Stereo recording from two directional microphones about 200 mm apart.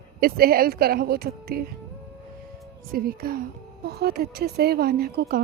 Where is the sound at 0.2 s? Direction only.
50° right (ahead or behind).